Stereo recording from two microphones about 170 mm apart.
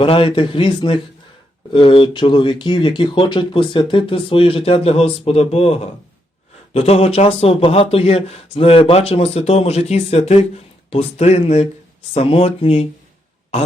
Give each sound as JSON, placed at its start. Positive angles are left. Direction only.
{"t": 0.0, "sound": "speech", "side_deg": 30}